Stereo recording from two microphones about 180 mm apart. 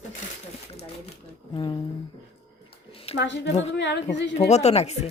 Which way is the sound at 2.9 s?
30° left (ahead or behind).